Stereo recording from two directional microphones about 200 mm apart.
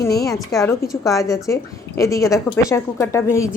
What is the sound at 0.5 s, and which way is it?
A woman's voice, 15° left (ahead or behind).